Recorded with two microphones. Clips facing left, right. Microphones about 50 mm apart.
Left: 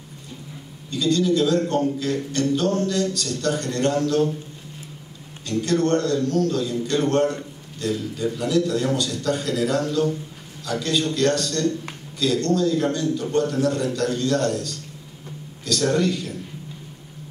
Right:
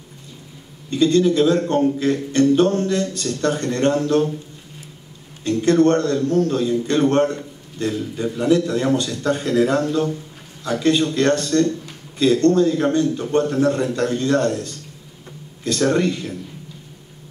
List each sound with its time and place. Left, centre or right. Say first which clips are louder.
0.8 s a man's voice: right 5 dB; right
5.4 s a man's voice: right 6 dB; right